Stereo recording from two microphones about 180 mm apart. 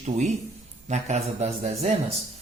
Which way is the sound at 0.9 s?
40° right (ahead or behind).